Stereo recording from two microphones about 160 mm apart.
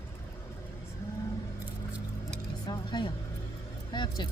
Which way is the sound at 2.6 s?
25° left (ahead or behind).